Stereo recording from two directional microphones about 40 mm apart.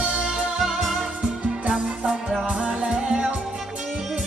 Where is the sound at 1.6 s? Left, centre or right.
Right.